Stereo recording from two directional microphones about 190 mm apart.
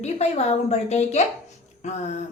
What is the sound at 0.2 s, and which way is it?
A woman's voice, 35° left (ahead or behind).